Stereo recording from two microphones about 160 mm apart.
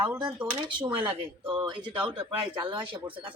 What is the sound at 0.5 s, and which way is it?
Speech, 25° right (ahead or behind).